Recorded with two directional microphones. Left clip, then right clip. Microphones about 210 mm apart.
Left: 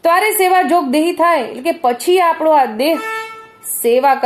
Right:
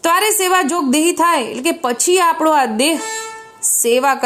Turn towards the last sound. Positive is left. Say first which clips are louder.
# left 2 dB
turn(degrees=-35)  # may be behind; listen again after turning